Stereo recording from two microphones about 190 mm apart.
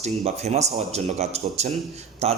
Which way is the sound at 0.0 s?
35° right (ahead or behind).